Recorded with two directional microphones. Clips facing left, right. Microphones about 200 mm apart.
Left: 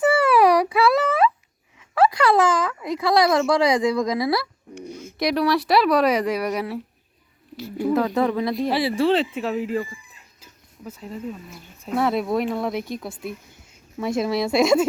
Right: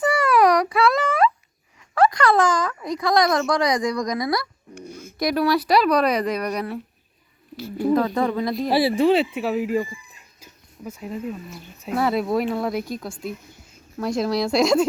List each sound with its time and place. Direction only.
0.0 s a sound: 5° left (ahead or behind)
3.7 s speech: 5° left (ahead or behind)
4.7 s a sound: 20° left (ahead or behind)
5.2 s speech: centre (ahead or behind)
7.5 s speech: 20° left (ahead or behind)
7.9 s speech: 5° left (ahead or behind)
8.7 s speech: 30° right (ahead or behind)
9.0 s speech: 10° right (ahead or behind)
10.4 s a sound: 10° right (ahead or behind)
11.8 s speech: centre (ahead or behind)